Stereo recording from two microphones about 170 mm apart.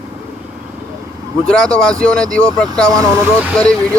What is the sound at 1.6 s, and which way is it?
Speech, 5° left (ahead or behind).